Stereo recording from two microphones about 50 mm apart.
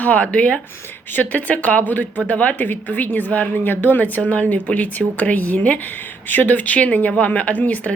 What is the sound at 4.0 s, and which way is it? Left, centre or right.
A woman's voice, left.